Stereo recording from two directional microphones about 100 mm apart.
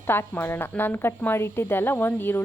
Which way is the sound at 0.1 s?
25° left (ahead or behind).